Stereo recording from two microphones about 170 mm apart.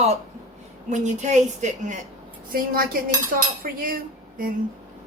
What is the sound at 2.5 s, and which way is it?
Speech, 60° right (ahead or behind).